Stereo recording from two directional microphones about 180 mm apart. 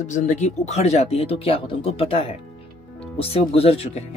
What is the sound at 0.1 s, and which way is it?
Speech, 40° left (ahead or behind).